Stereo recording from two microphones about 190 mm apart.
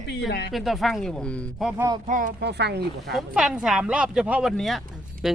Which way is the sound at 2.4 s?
60° right (ahead or behind).